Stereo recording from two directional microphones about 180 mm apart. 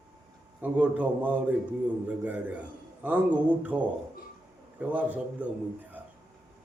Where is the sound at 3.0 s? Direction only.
10° right (ahead or behind).